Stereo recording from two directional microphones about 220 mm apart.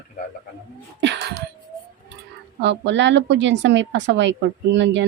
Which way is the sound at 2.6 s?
55° right (ahead or behind).